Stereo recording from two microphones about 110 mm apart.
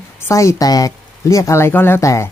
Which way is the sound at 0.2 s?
25° left (ahead or behind).